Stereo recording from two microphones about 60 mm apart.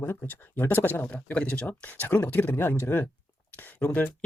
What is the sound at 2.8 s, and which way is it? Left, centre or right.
Speech, left.